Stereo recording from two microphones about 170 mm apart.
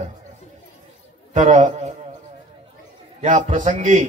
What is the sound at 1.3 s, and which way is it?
Speech, 45° right (ahead or behind).